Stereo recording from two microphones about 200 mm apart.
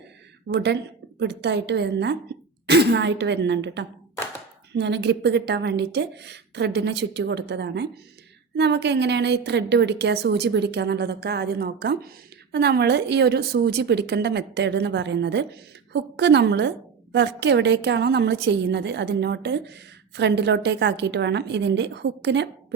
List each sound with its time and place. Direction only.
0.4 s a woman's voice: 60° right (ahead or behind)